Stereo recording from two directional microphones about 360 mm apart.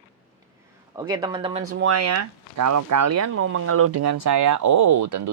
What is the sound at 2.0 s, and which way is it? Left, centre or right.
Speech, right.